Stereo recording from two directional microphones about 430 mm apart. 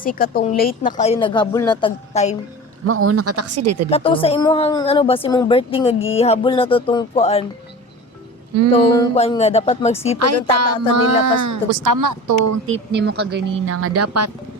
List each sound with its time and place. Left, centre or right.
0.0 s speech: centre
2.8 s speech: right
3.8 s speech: centre
8.7 s speech: centre
10.2 s speech: right
12.6 s speech: right